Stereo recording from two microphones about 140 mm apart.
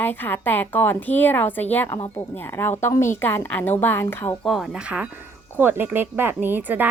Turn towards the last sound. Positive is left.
turn(degrees=-15)  # may be behind; listen again after turning